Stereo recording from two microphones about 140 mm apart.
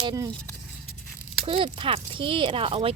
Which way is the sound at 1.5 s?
40° right (ahead or behind).